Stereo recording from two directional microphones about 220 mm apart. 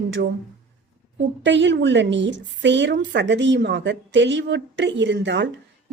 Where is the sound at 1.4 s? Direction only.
55° right (ahead or behind).